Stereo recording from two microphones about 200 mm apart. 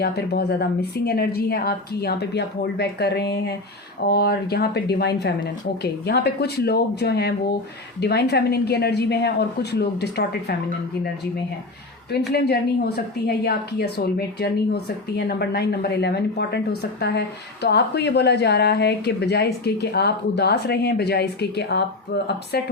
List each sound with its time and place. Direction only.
0.0 s a woman's voice: 55° left (ahead or behind)
12.3 s a woman's voice: 55° left (ahead or behind)